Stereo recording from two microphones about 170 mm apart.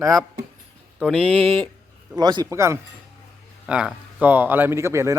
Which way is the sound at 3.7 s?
5° right (ahead or behind).